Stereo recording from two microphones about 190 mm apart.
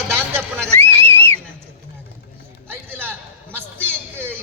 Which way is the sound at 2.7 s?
10° right (ahead or behind).